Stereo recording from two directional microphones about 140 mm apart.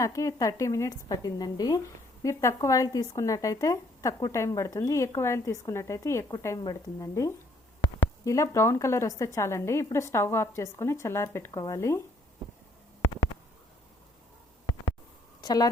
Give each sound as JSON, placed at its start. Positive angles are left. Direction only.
{"t": 0.0, "sound": "speech", "side_deg": 20}
{"t": 13.0, "sound": "a sound", "side_deg": 40}
{"t": 15.4, "sound": "speech", "side_deg": 30}